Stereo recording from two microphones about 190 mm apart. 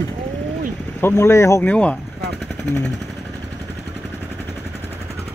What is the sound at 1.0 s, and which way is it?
Speech, 10° left (ahead or behind).